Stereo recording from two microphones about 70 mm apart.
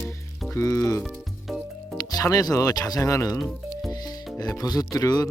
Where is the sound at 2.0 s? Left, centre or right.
Left.